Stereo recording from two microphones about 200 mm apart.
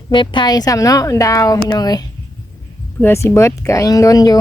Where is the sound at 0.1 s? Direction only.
25° left (ahead or behind).